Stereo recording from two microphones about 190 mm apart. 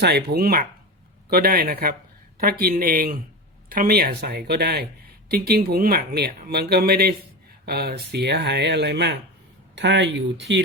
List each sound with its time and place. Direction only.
0.0 s speech: 60° right (ahead or behind)